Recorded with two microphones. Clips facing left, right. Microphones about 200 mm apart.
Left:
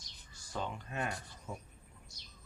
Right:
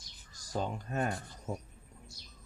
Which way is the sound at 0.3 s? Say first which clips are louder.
Right 5 dB; 40° right (ahead or behind).